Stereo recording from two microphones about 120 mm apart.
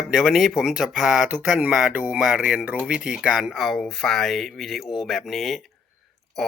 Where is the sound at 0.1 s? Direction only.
Centre (ahead or behind).